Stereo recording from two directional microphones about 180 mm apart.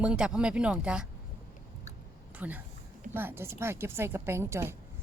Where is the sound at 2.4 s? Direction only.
10° right (ahead or behind).